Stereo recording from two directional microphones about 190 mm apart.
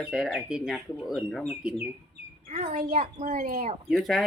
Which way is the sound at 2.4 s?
35° right (ahead or behind).